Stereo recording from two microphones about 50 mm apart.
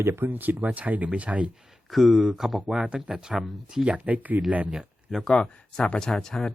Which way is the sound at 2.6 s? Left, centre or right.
Centre.